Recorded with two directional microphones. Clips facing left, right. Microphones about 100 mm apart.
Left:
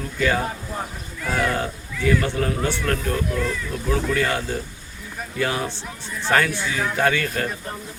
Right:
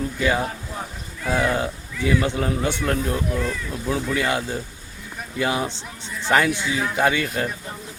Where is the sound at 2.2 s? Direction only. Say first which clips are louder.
Right 1 dB; 15° right (ahead or behind).